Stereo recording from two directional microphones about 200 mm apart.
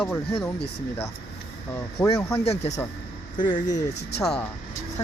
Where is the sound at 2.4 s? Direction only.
30° left (ahead or behind).